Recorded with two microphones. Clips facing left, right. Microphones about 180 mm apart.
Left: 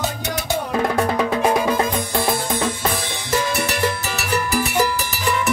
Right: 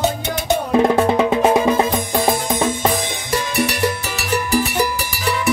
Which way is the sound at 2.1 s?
15° right (ahead or behind).